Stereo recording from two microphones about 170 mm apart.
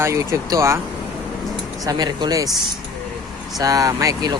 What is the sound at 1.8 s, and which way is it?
Speech, 25° right (ahead or behind).